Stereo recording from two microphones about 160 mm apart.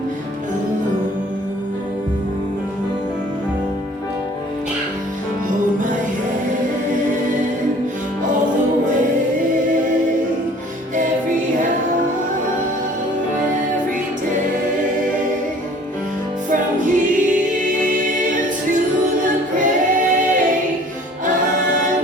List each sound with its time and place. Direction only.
16.5 s music: 55° right (ahead or behind)
19.5 s singing: 55° right (ahead or behind)